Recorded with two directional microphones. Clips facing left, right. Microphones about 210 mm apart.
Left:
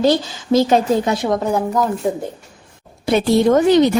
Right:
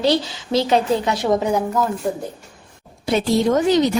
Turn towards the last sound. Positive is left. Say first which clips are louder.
# left 4 dB
turn(degrees=60)  # may be behind; listen again after turning